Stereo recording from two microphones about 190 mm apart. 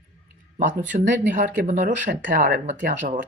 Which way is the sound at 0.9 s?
40° right (ahead or behind).